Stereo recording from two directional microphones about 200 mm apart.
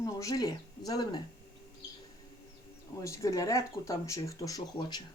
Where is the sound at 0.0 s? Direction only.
15° left (ahead or behind).